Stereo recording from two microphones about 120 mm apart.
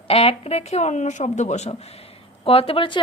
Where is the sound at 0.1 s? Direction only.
55° left (ahead or behind).